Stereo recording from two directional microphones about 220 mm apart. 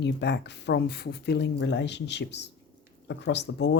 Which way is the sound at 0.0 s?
50° left (ahead or behind).